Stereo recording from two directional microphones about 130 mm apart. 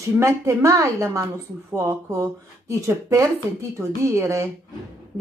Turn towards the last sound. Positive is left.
turn(degrees=-20)  # may be behind; listen again after turning